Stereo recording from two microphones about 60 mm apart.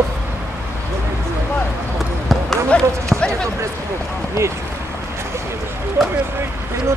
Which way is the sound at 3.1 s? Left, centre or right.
Centre.